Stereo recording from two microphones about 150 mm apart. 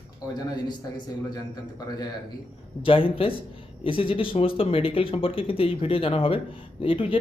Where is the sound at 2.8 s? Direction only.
35° left (ahead or behind).